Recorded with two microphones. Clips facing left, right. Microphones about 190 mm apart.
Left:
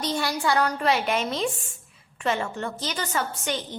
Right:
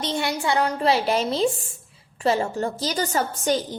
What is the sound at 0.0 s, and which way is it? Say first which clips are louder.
A woman's voice: right 1 dB; 25° right (ahead or behind).